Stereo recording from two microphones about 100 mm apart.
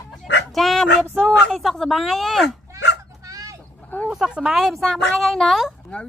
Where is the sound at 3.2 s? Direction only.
35° right (ahead or behind).